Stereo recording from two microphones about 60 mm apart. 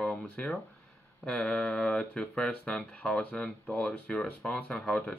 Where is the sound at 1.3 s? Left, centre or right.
Centre.